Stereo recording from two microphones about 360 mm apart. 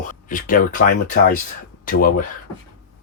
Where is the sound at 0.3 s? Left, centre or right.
Left.